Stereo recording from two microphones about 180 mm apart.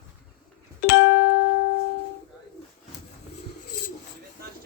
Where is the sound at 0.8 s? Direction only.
90° left.